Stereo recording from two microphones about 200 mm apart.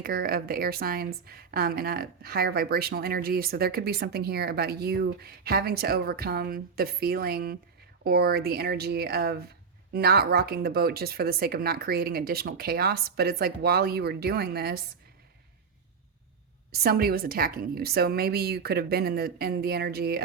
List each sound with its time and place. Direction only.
0.0 s a woman's voice: 50° right (ahead or behind)
16.7 s a woman's voice: 50° right (ahead or behind)